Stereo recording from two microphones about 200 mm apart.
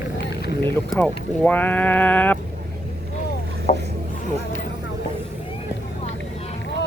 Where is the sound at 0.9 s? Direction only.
5° left (ahead or behind).